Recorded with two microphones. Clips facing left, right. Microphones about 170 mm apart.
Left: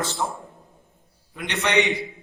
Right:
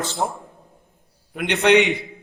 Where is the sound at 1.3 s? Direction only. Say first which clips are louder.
Right 7 dB; 65° right (ahead or behind).